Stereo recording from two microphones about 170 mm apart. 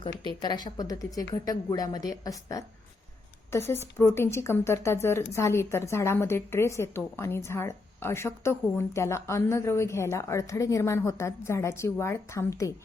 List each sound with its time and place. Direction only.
0.4 s a woman's voice: 25° left (ahead or behind)